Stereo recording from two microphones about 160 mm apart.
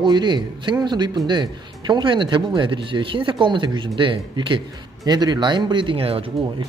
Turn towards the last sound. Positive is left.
turn(degrees=-35)  # may be behind; listen again after turning